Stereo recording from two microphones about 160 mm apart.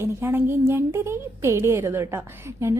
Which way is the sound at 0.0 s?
15° right (ahead or behind).